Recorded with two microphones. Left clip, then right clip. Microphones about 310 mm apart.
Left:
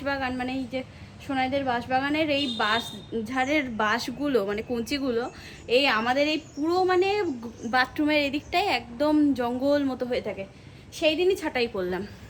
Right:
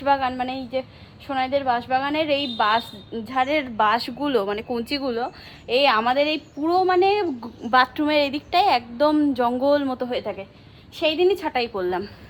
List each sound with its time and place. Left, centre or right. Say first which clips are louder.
0.0 s a woman's voice: right 8 dB; centre